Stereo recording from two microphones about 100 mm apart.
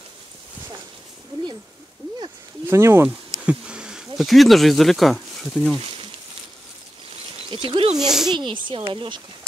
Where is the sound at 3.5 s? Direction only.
10° right (ahead or behind).